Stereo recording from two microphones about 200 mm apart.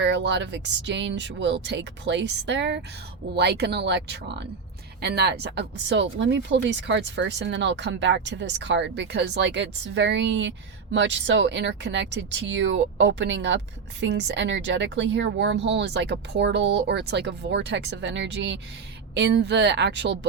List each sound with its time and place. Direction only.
0.0 s speech: 60° right (ahead or behind)